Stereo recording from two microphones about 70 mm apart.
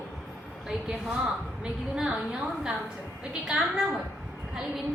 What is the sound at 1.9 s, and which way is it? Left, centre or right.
A woman's voice, centre.